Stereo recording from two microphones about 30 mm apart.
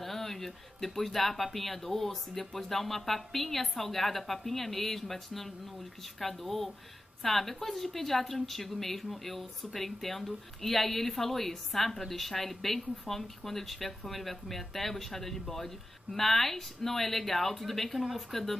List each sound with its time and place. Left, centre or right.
0.0 s speech: centre